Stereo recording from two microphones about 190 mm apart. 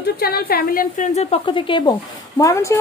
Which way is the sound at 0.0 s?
55° left (ahead or behind).